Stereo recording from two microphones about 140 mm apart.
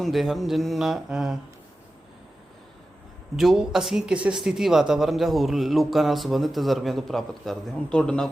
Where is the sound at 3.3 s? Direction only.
5° right (ahead or behind).